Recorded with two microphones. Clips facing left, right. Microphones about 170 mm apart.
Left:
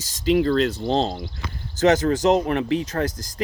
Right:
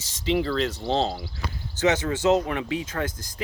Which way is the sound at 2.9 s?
40° left (ahead or behind).